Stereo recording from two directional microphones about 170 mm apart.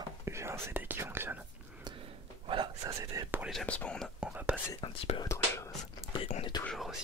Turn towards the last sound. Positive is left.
turn(degrees=0)  # may be behind; listen again after turning